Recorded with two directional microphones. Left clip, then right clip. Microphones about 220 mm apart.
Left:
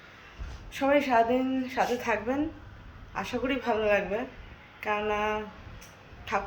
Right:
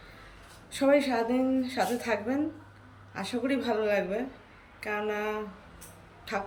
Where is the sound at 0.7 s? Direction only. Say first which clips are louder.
Even; 5° right (ahead or behind).